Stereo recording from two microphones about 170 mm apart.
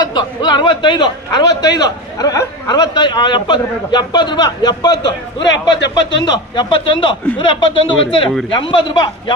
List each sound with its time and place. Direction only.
0.0 s a man's voice: 25° left (ahead or behind)
5.8 s speech: 90° left
6.2 s a man's voice: 25° left (ahead or behind)